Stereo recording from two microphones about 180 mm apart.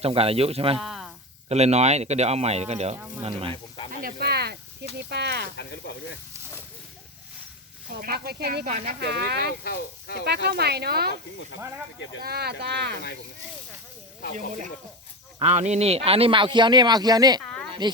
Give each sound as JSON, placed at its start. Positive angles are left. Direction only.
{"t": 0.0, "sound": "speech", "side_deg": -35}
{"t": 0.8, "sound": "a sound", "side_deg": 0}
{"t": 1.5, "sound": "speech", "side_deg": -35}
{"t": 4.0, "sound": "speech", "side_deg": -65}
{"t": 5.5, "sound": "speech", "side_deg": 70}
{"t": 7.9, "sound": "speech", "side_deg": -60}
{"t": 9.6, "sound": "speech", "side_deg": 60}
{"t": 10.2, "sound": "speech", "side_deg": -65}
{"t": 12.2, "sound": "speech", "side_deg": -60}
{"t": 14.3, "sound": "speech", "side_deg": -45}